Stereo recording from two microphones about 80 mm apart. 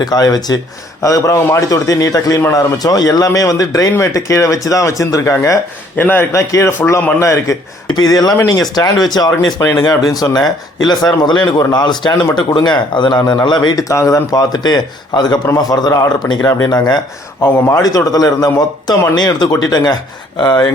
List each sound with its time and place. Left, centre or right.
0.0 s speech: left
1.0 s a man's voice: left
6.0 s a man's voice: left
6.3 s speech: left
7.9 s a man's voice: left
10.8 s speech: left
13.8 s a man's voice: left
17.4 s a man's voice: left
20.4 s speech: left